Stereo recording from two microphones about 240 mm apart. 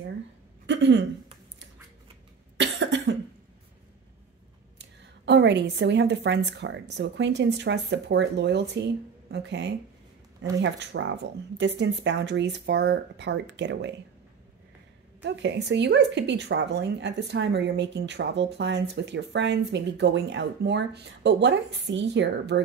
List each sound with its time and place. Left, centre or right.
0.7 s a sound: right
2.5 s cough: right
4.7 s speech: right
15.2 s speech: right